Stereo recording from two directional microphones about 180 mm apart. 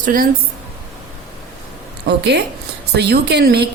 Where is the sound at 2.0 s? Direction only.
70° right (ahead or behind).